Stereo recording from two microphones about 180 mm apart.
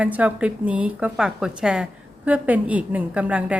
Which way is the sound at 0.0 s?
10° right (ahead or behind).